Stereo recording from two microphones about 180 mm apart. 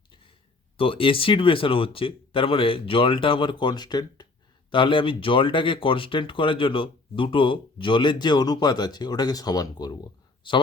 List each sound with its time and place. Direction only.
0.8 s speech: 30° left (ahead or behind)